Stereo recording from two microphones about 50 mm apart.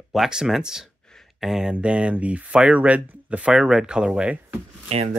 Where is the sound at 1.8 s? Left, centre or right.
Right.